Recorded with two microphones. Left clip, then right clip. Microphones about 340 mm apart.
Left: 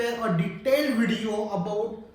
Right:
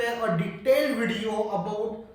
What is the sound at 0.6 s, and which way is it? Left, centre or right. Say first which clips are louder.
Speech: right 1 dB; centre.